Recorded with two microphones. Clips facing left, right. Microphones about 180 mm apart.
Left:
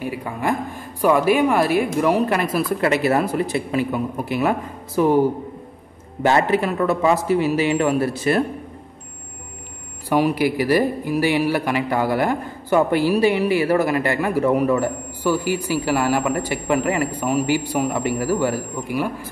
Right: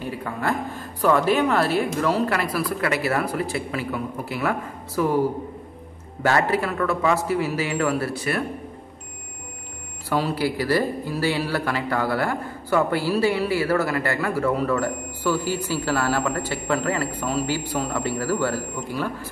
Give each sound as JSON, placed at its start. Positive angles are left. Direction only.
{"t": 0.0, "sound": "a woman's voice", "side_deg": 15}
{"t": 6.2, "sound": "a woman's voice", "side_deg": 20}
{"t": 10.0, "sound": "speech", "side_deg": 15}